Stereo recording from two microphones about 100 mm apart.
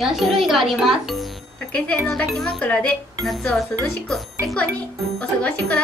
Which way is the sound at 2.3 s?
5° left (ahead or behind).